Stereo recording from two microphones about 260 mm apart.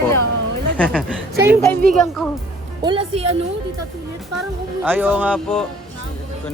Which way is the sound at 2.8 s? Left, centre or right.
Centre.